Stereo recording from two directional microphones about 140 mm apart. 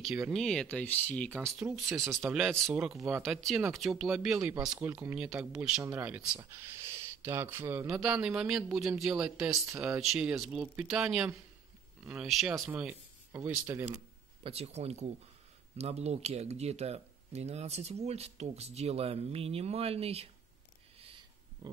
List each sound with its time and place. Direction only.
0.0 s speech: centre (ahead or behind)
1.6 s speech: 5° right (ahead or behind)
9.5 s speech: 20° right (ahead or behind)
9.9 s speech: 5° right (ahead or behind)
14.4 s speech: 45° right (ahead or behind)